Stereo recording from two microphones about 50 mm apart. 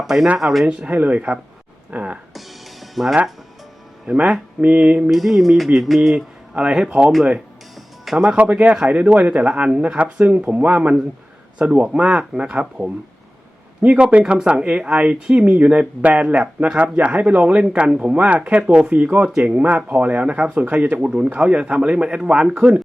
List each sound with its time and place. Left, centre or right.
0.0 s speech: centre
0.6 s speech: right
1.9 s music: right
2.8 s music: centre
4.1 s speech: right
5.1 s speech: centre
8.4 s speech: right